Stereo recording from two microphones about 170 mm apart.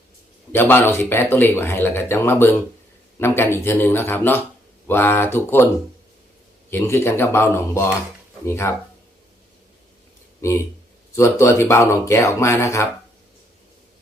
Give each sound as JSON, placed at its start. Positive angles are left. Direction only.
{"t": 0.5, "sound": "speech", "side_deg": 10}
{"t": 6.7, "sound": "speech", "side_deg": 15}
{"t": 10.4, "sound": "speech", "side_deg": 15}